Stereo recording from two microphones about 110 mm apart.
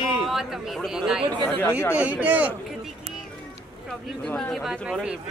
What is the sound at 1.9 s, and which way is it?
Speech, 15° right (ahead or behind).